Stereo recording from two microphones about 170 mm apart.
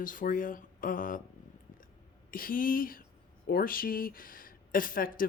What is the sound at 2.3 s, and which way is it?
A woman's voice, 55° left (ahead or behind).